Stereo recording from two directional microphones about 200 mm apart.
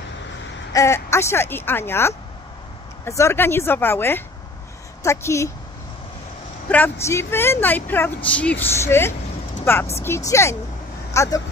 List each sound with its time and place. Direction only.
0.7 s speech: 15° left (ahead or behind)
6.7 s speech: 10° left (ahead or behind)